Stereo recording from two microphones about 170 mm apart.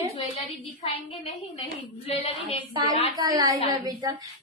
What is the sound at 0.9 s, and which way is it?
A woman's voice, 35° left (ahead or behind).